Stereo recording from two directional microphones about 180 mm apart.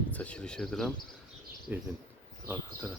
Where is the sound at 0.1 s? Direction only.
5° left (ahead or behind).